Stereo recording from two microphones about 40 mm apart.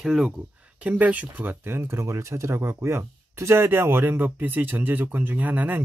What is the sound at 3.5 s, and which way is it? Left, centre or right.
Speech, right.